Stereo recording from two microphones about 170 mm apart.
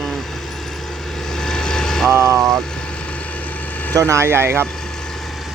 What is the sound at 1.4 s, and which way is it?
Vehicle, 5° left (ahead or behind).